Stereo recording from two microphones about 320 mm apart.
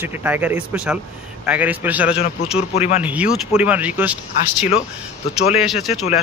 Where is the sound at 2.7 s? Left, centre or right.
Left.